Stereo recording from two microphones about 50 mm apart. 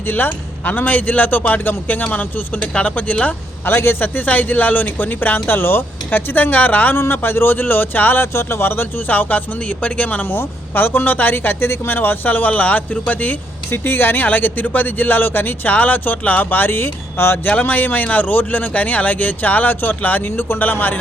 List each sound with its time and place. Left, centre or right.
0.1 s speech: left
3.7 s a man's voice: left
4.0 s speech: left
6.9 s a man's voice: left
8.2 s speech: left
10.2 s speech: left
13.7 s speech: left
17.4 s speech: left